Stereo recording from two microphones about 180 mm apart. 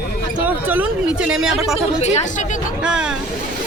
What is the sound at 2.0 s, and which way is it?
Speech, 35° left (ahead or behind).